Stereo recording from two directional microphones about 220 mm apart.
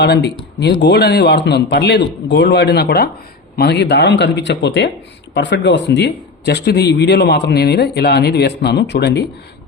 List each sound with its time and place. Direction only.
0.0 s a man's voice: 50° left (ahead or behind)